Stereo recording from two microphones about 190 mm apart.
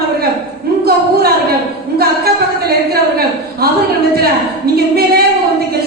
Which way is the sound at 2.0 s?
55° right (ahead or behind).